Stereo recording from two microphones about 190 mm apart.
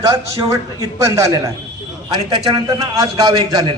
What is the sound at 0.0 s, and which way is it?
A man's voice, 15° right (ahead or behind).